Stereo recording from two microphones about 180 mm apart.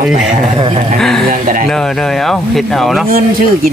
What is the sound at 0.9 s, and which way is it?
Speech, centre (ahead or behind).